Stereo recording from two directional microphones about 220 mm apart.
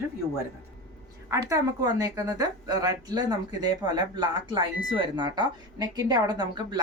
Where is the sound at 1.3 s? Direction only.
15° right (ahead or behind).